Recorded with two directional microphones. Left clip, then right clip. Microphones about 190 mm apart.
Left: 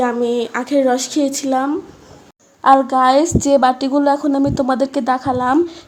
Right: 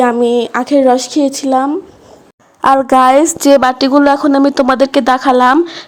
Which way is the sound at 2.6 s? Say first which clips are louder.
Right 3 dB; 45° right (ahead or behind).